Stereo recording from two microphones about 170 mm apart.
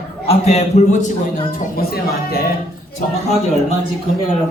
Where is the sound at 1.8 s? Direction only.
65° left (ahead or behind).